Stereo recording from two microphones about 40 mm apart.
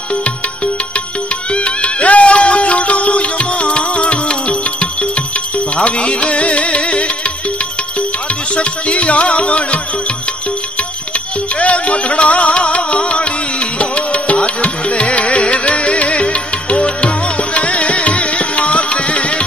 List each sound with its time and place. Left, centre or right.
1.5 s music: left
8.5 s music: left
11.5 s music: left